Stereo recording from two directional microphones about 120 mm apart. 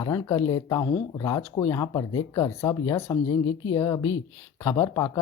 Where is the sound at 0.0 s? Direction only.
25° left (ahead or behind).